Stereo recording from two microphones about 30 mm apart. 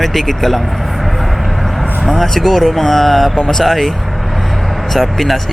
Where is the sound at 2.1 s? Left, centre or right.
Centre.